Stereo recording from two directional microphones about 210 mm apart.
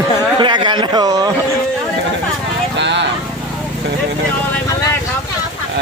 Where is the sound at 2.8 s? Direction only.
55° right (ahead or behind).